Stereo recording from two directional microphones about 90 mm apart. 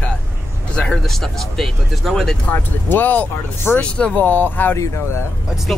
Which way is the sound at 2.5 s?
20° left (ahead or behind).